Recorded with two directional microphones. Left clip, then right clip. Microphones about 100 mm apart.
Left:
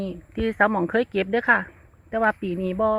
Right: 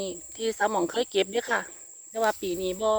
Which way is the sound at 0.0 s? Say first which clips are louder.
Left 3 dB; 65° right (ahead or behind).